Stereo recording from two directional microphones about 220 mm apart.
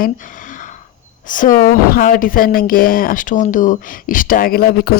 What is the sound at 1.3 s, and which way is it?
A woman's voice, 35° left (ahead or behind).